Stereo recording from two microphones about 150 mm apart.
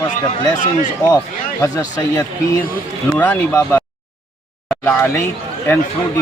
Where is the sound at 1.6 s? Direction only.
25° left (ahead or behind).